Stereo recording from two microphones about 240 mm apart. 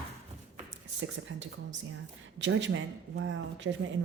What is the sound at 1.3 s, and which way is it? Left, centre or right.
Speech, right.